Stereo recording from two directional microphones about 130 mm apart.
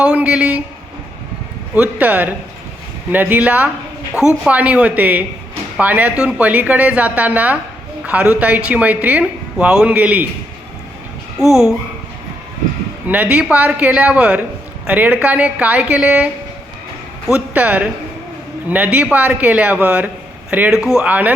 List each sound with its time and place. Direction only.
0.0 s a man's voice: 10° right (ahead or behind)
1.7 s speech: 10° right (ahead or behind)
11.3 s a child's voice: centre (ahead or behind)
13.1 s speech: 10° right (ahead or behind)
17.5 s speech: 10° right (ahead or behind)